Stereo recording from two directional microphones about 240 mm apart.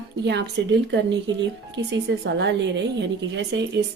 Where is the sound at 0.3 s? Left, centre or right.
Right.